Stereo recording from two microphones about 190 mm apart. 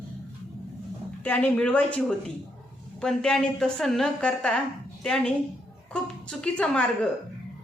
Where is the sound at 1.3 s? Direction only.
10° left (ahead or behind).